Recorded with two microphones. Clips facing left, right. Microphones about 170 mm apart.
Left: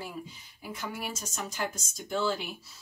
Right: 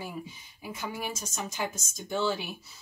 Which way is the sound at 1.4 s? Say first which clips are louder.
Even; centre (ahead or behind).